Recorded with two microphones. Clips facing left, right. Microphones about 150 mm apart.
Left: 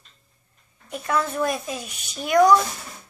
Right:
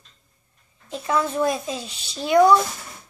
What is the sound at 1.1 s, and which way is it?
Speech, 20° right (ahead or behind).